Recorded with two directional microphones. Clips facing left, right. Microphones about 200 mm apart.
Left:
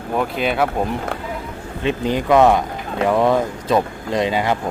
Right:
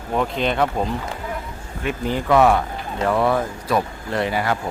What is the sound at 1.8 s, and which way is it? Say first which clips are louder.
Speech: left 4 dB; 20° left (ahead or behind).